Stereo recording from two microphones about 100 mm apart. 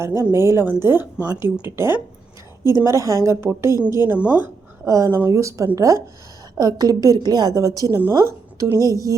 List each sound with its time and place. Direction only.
0.0 s a woman's voice: 25° right (ahead or behind)
4.2 s a woman's voice: 15° right (ahead or behind)
4.9 s a woman's voice: 35° right (ahead or behind)